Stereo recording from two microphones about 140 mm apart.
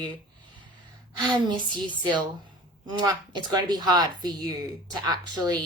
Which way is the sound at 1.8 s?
35° right (ahead or behind).